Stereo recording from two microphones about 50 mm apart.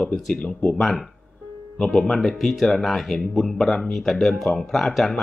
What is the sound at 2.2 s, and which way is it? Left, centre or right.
Speech, centre.